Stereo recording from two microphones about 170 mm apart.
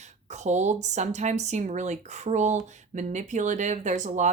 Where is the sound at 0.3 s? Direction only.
45° right (ahead or behind).